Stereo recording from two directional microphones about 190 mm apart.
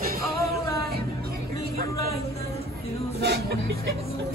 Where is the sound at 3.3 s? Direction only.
55° right (ahead or behind).